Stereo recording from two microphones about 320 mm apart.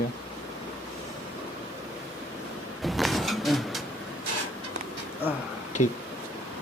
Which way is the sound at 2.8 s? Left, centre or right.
Centre.